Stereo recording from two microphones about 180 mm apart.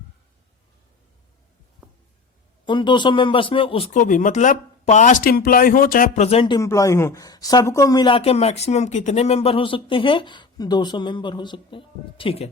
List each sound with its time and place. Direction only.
2.6 s a woman's voice: 25° left (ahead or behind)
3.9 s speech: 45° left (ahead or behind)
6.2 s a woman's voice: 30° left (ahead or behind)